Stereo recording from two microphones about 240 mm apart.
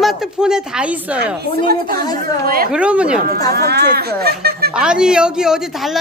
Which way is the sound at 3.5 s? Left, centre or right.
Right.